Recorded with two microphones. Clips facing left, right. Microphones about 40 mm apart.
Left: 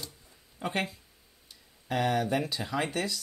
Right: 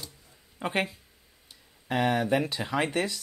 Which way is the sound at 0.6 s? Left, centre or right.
Right.